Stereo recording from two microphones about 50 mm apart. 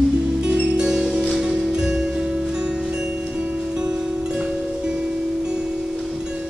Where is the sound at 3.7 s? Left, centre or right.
Centre.